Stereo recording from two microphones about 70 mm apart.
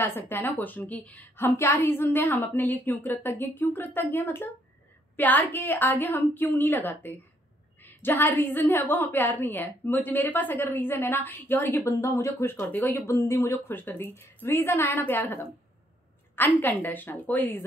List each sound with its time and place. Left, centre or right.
0.0 s a woman's voice: left
11.8 s a woman's voice: left
13.7 s a woman's voice: left